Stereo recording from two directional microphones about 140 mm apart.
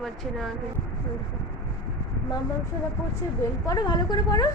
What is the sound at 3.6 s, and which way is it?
Speech, 25° left (ahead or behind).